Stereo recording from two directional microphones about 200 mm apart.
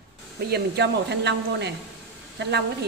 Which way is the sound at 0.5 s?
55° right (ahead or behind).